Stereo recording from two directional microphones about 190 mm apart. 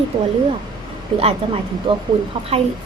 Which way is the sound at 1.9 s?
30° right (ahead or behind).